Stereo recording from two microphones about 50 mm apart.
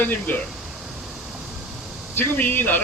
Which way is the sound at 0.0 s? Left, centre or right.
Left.